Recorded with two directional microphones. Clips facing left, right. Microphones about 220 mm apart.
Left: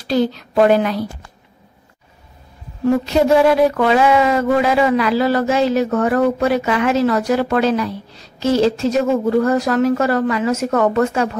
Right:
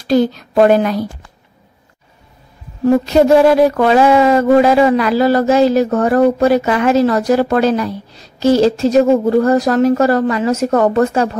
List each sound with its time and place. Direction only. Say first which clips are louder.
0.1 s speech: right 4 dB; 45° right (ahead or behind)
3.3 s speech: right 3 dB; 40° right (ahead or behind)